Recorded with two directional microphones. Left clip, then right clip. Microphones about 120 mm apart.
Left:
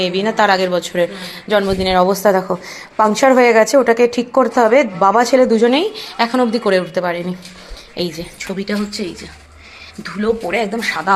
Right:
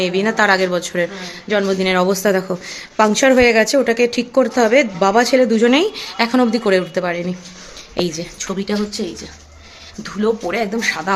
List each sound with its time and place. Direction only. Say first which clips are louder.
0.0 s speech: left 1 dB; 20° right (ahead or behind)
5.6 s a woman's voice: even; 25° right (ahead or behind)
7.9 s a woman's voice: right 1 dB; 35° right (ahead or behind)